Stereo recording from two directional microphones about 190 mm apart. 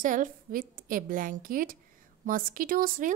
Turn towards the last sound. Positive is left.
turn(degrees=-50)  # may be behind; listen again after turning